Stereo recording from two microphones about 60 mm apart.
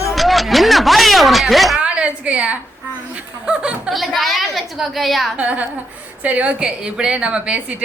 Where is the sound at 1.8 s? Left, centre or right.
Centre.